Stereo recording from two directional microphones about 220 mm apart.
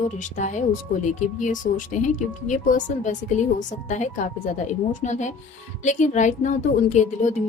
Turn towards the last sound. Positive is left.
turn(degrees=35)  # may be behind; listen again after turning